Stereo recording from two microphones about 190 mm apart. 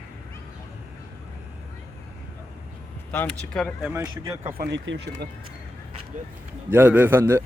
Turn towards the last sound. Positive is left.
turn(degrees=-10)  # may be behind; listen again after turning